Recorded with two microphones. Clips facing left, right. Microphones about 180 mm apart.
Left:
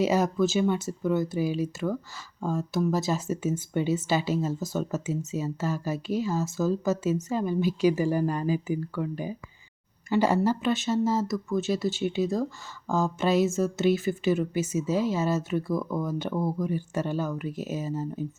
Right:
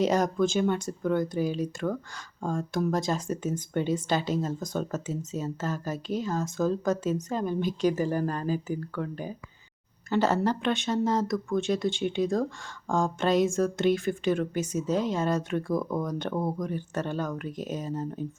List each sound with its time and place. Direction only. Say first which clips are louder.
0.0 s speech: left 1 dB; 5° left (ahead or behind)
16.3 s speech: left 1 dB; 20° right (ahead or behind)
16.6 s speech: left 2 dB; 10° left (ahead or behind)